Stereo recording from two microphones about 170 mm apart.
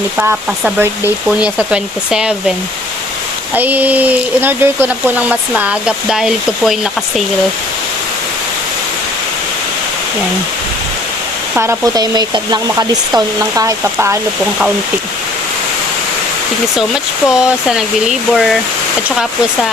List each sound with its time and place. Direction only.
0.2 s speech: 10° right (ahead or behind)
3.5 s speech: 10° right (ahead or behind)
11.5 s speech: 15° right (ahead or behind)
16.7 s speech: 5° right (ahead or behind)